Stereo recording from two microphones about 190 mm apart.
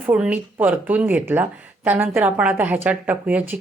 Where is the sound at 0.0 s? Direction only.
5° right (ahead or behind).